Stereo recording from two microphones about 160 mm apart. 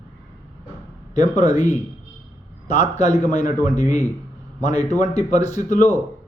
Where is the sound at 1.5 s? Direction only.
45° left (ahead or behind).